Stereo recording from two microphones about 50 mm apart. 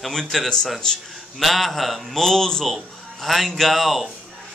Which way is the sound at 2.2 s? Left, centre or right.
Centre.